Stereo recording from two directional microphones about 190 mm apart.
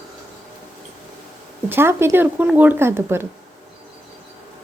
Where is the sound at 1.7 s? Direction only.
10° right (ahead or behind).